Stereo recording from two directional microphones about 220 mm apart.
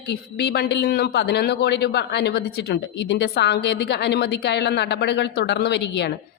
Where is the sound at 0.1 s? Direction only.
50° left (ahead or behind).